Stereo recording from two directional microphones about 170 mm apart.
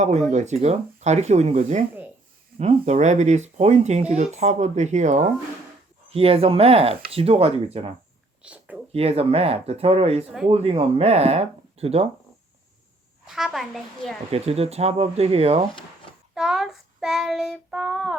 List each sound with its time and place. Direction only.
0.3 s speech: 40° right (ahead or behind)
8.4 s whispering: 5° right (ahead or behind)
8.9 s speech: 35° right (ahead or behind)
13.2 s a woman's voice: centre (ahead or behind)
14.3 s speech: 35° right (ahead or behind)
16.3 s child singing: centre (ahead or behind)